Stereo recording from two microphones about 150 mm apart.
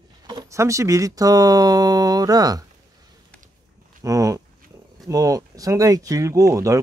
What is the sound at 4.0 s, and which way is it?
Speech, 20° right (ahead or behind).